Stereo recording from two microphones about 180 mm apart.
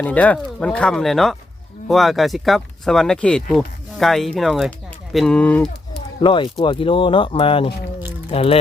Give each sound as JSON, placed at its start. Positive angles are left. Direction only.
{"t": 0.0, "sound": "speech", "side_deg": 10}
{"t": 6.2, "sound": "speech", "side_deg": 25}